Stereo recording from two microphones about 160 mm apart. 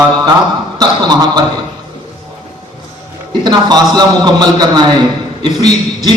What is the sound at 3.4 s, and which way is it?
A man's voice, 25° right (ahead or behind).